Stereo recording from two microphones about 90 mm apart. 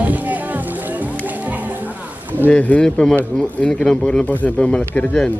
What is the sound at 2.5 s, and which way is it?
A man's voice, 15° left (ahead or behind).